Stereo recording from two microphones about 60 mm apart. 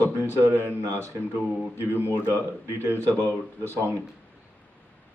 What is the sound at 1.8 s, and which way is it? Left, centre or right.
Speech, right.